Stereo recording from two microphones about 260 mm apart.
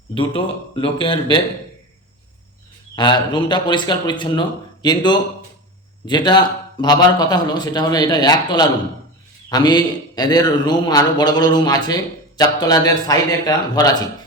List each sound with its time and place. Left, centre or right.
0.1 s a man's voice: centre
2.9 s a man's voice: centre